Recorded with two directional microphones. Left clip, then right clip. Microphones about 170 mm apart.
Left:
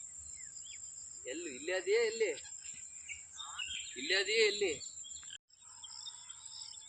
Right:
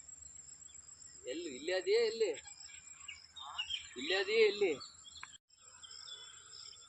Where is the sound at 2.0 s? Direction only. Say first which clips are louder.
Even; 15° right (ahead or behind).